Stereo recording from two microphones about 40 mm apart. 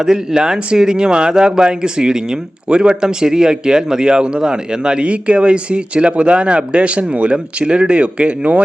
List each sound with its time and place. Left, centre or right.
0.0 s speech: centre